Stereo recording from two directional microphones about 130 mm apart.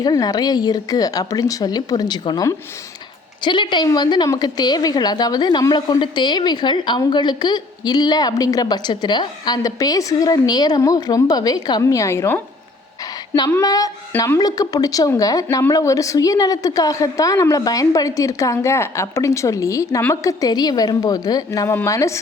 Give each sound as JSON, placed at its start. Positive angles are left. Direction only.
{"t": 0.0, "sound": "a woman's voice", "side_deg": 30}
{"t": 13.5, "sound": "a woman's voice", "side_deg": 25}
{"t": 20.4, "sound": "speech", "side_deg": 30}